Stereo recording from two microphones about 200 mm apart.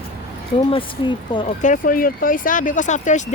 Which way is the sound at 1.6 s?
40° left (ahead or behind).